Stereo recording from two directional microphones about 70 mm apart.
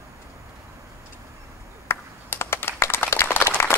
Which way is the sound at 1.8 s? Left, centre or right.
Left.